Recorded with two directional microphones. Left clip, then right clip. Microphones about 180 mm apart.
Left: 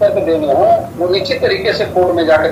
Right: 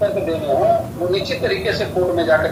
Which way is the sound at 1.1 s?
50° left (ahead or behind).